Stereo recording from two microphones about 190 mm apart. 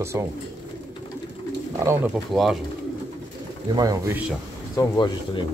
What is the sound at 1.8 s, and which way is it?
Speech, 15° right (ahead or behind).